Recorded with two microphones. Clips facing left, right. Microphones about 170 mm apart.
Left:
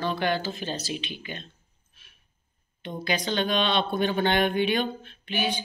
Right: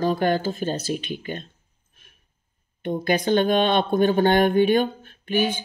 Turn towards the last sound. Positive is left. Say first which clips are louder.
# right 7 dB
turn(degrees=-45)  # may be behind; listen again after turning